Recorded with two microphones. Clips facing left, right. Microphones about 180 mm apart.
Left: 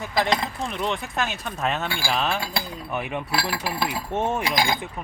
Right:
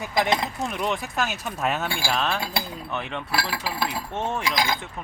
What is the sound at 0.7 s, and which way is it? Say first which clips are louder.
Speech: even; 5° right (ahead or behind).